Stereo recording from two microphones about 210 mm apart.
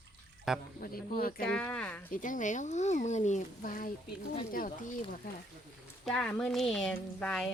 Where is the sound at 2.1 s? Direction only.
40° left (ahead or behind).